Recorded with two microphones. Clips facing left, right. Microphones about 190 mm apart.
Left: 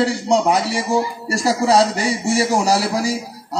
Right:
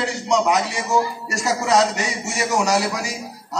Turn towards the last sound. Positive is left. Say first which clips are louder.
# left 3 dB
turn(degrees=35)  # may be behind; listen again after turning